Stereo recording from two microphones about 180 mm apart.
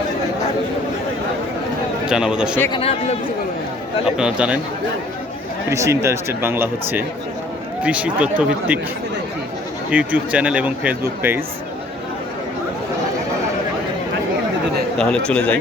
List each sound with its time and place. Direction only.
2.0 s a man's voice: 5° right (ahead or behind)
2.7 s a man's voice: 35° left (ahead or behind)
4.0 s a man's voice: 5° right (ahead or behind)
5.6 s speech: 15° right (ahead or behind)
9.9 s speech: 10° right (ahead or behind)
14.9 s a man's voice: 5° left (ahead or behind)